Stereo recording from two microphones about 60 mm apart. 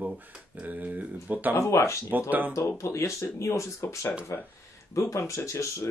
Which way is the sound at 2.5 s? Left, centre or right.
Left.